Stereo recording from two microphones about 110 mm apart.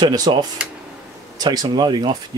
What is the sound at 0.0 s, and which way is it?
Speech, 40° right (ahead or behind).